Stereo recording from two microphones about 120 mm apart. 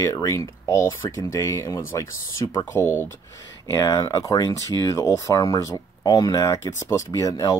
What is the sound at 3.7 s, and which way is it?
Speech, 30° left (ahead or behind).